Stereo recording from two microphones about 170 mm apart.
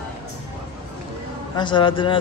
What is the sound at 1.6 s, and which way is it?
Speech, 30° left (ahead or behind).